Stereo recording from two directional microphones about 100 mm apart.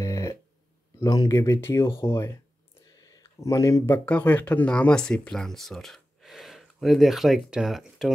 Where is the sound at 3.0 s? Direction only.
40° left (ahead or behind).